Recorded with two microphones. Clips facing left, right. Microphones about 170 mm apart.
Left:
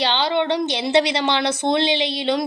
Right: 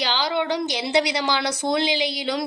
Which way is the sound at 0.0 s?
25° left (ahead or behind).